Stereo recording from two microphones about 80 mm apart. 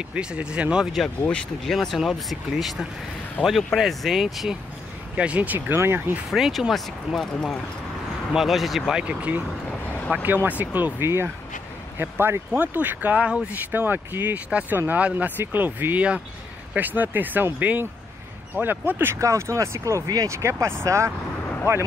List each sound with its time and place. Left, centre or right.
0.1 s speech: centre
1.3 s speech: centre
5.1 s speech: centre
6.3 s speech: centre
9.0 s speech: centre
19.1 s speech: right